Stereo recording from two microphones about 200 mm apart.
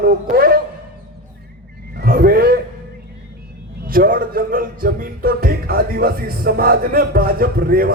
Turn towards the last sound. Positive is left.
turn(degrees=-50)  # may be behind; listen again after turning